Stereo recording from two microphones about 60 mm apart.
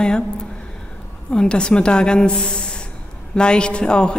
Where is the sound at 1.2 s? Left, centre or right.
Centre.